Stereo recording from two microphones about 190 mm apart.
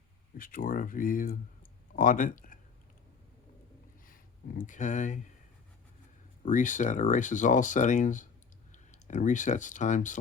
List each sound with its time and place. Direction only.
0.3 s speech: 45° left (ahead or behind)
4.0 s speech: 45° left (ahead or behind)
6.4 s speech: 40° left (ahead or behind)